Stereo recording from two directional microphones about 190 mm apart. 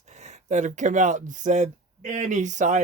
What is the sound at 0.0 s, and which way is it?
Speech, 35° right (ahead or behind).